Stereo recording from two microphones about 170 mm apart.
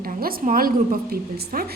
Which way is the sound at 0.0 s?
55° right (ahead or behind).